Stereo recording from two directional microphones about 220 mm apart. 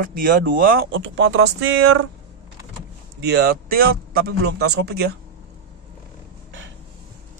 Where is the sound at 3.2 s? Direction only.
45° right (ahead or behind).